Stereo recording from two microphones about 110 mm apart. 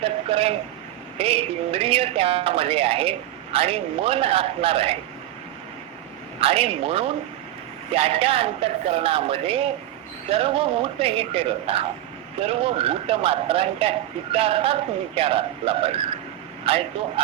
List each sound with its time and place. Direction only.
0.0 s a sound: 60° right (ahead or behind)
1.2 s speech: 60° right (ahead or behind)
6.4 s speech: 60° right (ahead or behind)